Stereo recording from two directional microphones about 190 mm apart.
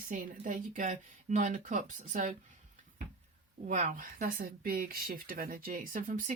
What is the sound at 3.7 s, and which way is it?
A woman's voice, 40° right (ahead or behind).